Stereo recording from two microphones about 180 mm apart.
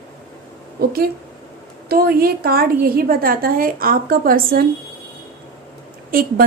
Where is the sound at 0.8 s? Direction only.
55° right (ahead or behind).